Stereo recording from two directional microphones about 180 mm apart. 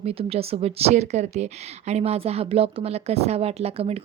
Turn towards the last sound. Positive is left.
turn(degrees=-35)  # may be behind; listen again after turning